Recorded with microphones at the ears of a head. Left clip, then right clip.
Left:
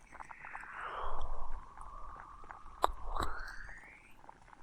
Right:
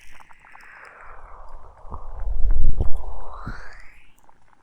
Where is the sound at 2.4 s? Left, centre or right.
Right.